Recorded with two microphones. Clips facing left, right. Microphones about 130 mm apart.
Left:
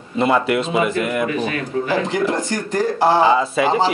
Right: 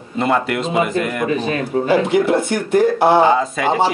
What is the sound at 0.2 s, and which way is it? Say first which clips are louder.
Speech: left 1 dB; centre (ahead or behind).